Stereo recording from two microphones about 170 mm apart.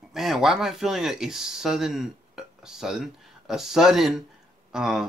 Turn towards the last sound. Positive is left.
turn(degrees=-5)  # may be behind; listen again after turning